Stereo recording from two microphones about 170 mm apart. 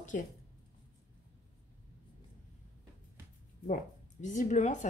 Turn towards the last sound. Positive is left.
turn(degrees=45)  # may be behind; listen again after turning